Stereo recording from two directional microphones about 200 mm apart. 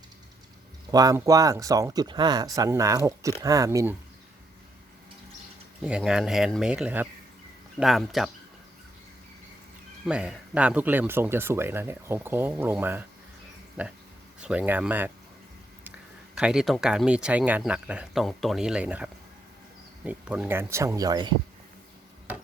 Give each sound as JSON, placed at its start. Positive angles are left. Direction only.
{"t": 0.9, "sound": "speech", "side_deg": -20}
{"t": 5.8, "sound": "speech", "side_deg": -5}
{"t": 10.1, "sound": "speech", "side_deg": -5}
{"t": 16.3, "sound": "speech", "side_deg": -5}